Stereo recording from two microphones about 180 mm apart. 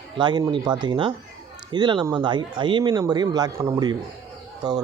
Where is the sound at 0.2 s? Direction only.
25° right (ahead or behind).